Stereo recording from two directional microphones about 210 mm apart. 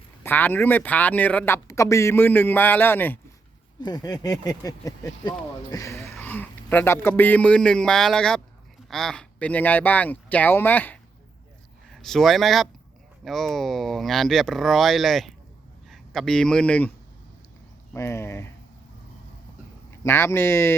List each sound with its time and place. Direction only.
0.2 s a man's voice: 10° left (ahead or behind)
17.9 s speech: 10° left (ahead or behind)
20.1 s speech: 10° left (ahead or behind)